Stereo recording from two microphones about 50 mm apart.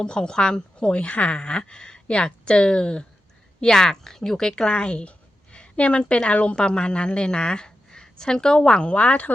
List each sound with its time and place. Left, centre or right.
0.0 s a woman's voice: centre